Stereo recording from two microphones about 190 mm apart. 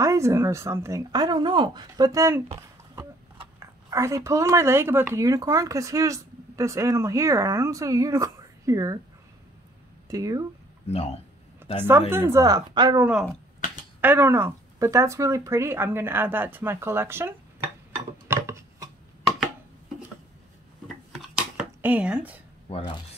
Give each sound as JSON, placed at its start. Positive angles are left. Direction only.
{"t": 0.0, "sound": "speech", "side_deg": -15}
{"t": 10.0, "sound": "speech", "side_deg": -15}
{"t": 11.6, "sound": "a sound", "side_deg": -10}
{"t": 12.1, "sound": "speech", "side_deg": -15}
{"t": 13.0, "sound": "speech", "side_deg": -10}
{"t": 18.3, "sound": "chopping", "side_deg": -15}
{"t": 20.8, "sound": "a sound", "side_deg": 0}